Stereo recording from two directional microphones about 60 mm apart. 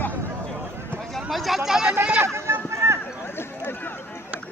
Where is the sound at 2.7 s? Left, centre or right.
Right.